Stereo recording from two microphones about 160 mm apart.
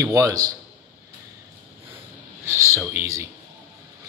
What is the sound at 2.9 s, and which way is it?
Speech, 15° right (ahead or behind).